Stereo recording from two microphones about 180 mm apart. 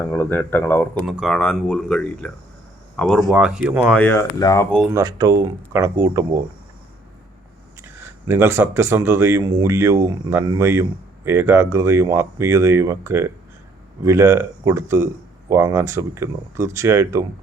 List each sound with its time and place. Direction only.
0.0 s speech: 10° left (ahead or behind)
1.0 s speech: centre (ahead or behind)
3.9 s speech: 10° left (ahead or behind)
4.9 s speech: 20° right (ahead or behind)
7.9 s speech: 10° right (ahead or behind)